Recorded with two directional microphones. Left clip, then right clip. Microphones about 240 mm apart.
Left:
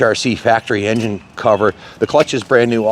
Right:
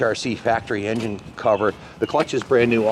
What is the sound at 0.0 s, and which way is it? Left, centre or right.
Speech, left.